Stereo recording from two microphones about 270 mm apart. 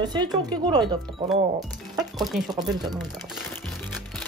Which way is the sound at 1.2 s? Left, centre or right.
Centre.